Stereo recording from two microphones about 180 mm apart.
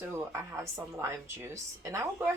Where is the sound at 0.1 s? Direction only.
15° right (ahead or behind).